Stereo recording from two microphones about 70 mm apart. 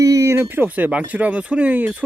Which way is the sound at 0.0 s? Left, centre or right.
Right.